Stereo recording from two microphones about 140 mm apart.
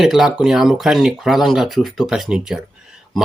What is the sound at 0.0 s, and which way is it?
Speech, 5° right (ahead or behind).